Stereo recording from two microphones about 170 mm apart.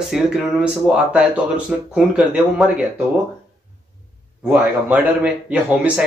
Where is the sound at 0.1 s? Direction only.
5° right (ahead or behind).